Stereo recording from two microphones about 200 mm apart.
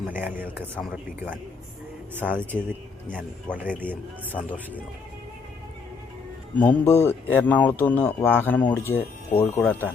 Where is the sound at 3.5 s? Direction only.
5° left (ahead or behind).